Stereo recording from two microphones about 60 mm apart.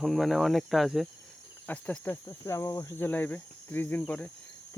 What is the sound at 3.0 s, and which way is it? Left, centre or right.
Speech, left.